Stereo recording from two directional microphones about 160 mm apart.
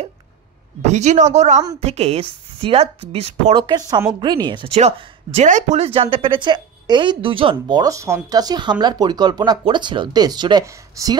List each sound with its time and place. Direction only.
0.8 s a woman's voice: 45° right (ahead or behind)
3.5 s speech: 25° right (ahead or behind)
4.7 s speech: 40° right (ahead or behind); by 11.1 s 20° right (ahead or behind)